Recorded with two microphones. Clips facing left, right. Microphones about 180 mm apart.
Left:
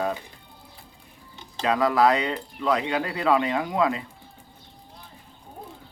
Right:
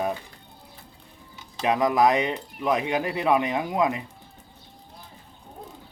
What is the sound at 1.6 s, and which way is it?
Speech, 20° right (ahead or behind).